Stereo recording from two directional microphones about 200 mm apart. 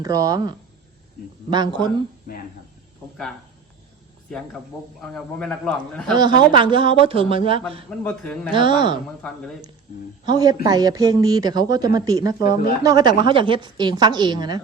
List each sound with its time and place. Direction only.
0.0 s a woman's voice: 15° right (ahead or behind)
5.0 s a man's voice: 5° left (ahead or behind)
6.1 s a woman's voice: 20° right (ahead or behind)
7.9 s a man's voice: 5° left (ahead or behind)
8.5 s a woman's voice: 25° right (ahead or behind)
9.2 s a man's voice: 5° left (ahead or behind)
10.2 s speech: 20° right (ahead or behind)
12.4 s speech: 45° left (ahead or behind)
12.8 s a woman's voice: 20° right (ahead or behind)